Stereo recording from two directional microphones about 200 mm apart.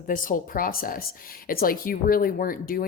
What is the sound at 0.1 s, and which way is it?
Speech, 40° left (ahead or behind).